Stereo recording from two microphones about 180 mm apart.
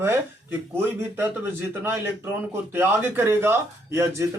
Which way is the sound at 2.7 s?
10° right (ahead or behind).